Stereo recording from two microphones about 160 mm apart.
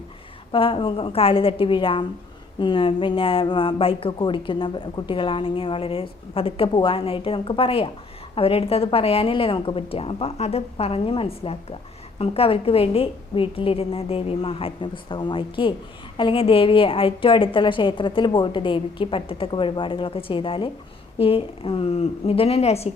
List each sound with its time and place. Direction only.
0.5 s speech: 35° left (ahead or behind)